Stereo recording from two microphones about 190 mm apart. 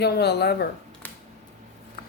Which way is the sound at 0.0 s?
60° left (ahead or behind).